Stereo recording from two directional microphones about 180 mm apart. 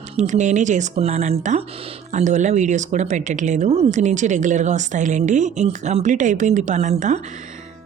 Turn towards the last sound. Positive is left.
turn(degrees=-40)  # may be behind; listen again after turning